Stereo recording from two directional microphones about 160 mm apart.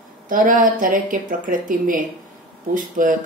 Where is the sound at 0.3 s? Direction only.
55° right (ahead or behind).